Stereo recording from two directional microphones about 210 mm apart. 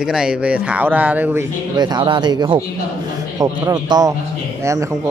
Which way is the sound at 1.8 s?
20° right (ahead or behind).